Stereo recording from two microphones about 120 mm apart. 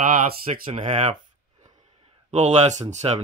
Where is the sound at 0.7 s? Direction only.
75° right (ahead or behind).